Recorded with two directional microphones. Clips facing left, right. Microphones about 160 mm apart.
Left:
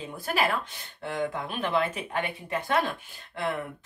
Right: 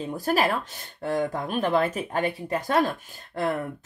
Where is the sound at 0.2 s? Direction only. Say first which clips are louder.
Right 3 dB; 40° right (ahead or behind).